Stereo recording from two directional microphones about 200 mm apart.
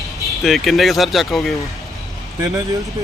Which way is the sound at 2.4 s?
15° right (ahead or behind).